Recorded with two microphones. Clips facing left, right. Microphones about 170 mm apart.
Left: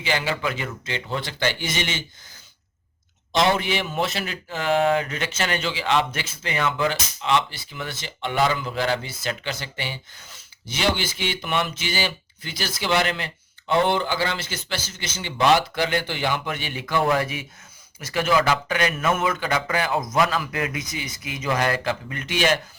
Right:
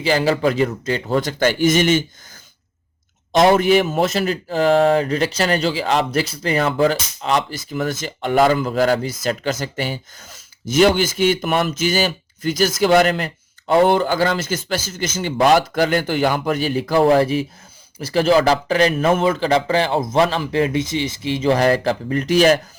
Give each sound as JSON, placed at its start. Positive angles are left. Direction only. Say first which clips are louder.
{"t": 0.0, "sound": "speech", "louder": "right 8 dB", "side_deg": -35}
{"t": 3.3, "sound": "speech", "louder": "right 8 dB", "side_deg": -50}